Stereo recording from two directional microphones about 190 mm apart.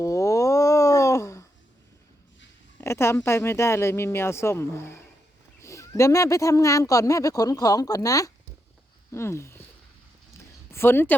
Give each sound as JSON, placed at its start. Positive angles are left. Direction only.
{"t": 0.0, "sound": "a sound", "side_deg": 15}
{"t": 2.8, "sound": "speech", "side_deg": 15}
{"t": 10.7, "sound": "speech", "side_deg": 10}